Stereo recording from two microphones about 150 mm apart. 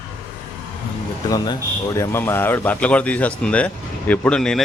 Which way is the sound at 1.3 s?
25° left (ahead or behind).